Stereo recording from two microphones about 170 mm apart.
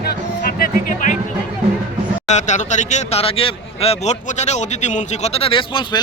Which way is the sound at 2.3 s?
45° left (ahead or behind).